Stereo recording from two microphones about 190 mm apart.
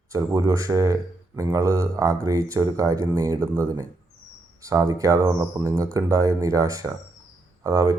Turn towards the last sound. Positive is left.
turn(degrees=-15)  # may be behind; listen again after turning